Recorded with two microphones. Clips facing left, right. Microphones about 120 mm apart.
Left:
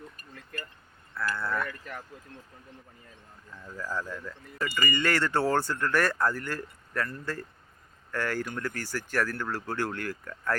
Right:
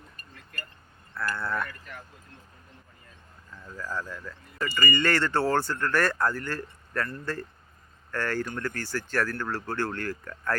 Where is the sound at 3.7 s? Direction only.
10° left (ahead or behind).